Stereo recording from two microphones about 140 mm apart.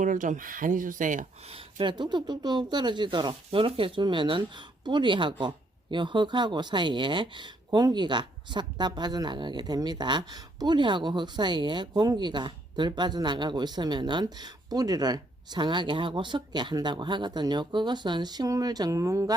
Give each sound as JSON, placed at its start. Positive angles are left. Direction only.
{"t": 0.0, "sound": "speech", "side_deg": -65}
{"t": 1.5, "sound": "speech", "side_deg": -40}